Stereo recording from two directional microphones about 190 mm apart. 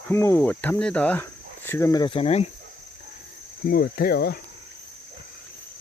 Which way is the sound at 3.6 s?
55° left (ahead or behind).